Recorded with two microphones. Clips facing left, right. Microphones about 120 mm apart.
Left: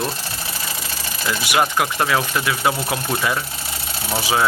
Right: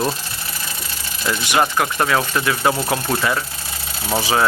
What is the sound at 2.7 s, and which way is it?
Speech, 25° right (ahead or behind).